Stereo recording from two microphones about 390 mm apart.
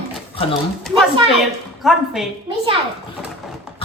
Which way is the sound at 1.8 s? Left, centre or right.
Centre.